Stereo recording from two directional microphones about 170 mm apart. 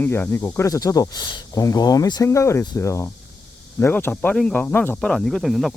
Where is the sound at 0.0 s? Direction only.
15° left (ahead or behind).